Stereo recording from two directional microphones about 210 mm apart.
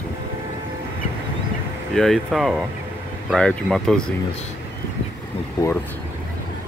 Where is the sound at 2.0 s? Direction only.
Centre (ahead or behind).